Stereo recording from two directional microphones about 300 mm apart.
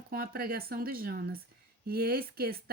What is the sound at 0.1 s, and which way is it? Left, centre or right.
Speech, right.